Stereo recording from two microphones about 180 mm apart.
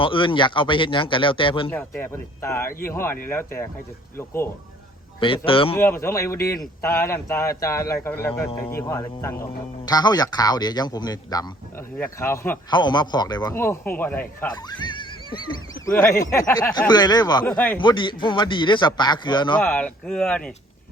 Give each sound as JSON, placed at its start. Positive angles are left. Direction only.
{"t": 0.0, "sound": "speech", "side_deg": 30}
{"t": 1.7, "sound": "speech", "side_deg": 10}
{"t": 5.5, "sound": "speech", "side_deg": 30}
{"t": 5.7, "sound": "speech", "side_deg": 15}
{"t": 8.4, "sound": "speech", "side_deg": 30}
{"t": 8.7, "sound": "speech", "side_deg": 15}
{"t": 12.7, "sound": "speech", "side_deg": 25}
{"t": 14.5, "sound": "speech", "side_deg": 25}
{"t": 17.4, "sound": "speech", "side_deg": 10}
{"t": 17.7, "sound": "speech", "side_deg": 25}
{"t": 19.5, "sound": "speech", "side_deg": 5}